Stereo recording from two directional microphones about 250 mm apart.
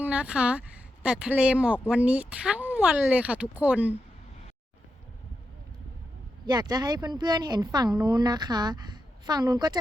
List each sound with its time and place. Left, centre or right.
0.0 s speech: centre
6.4 s speech: centre